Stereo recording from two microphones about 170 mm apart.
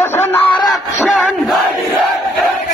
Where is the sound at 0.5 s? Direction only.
25° left (ahead or behind).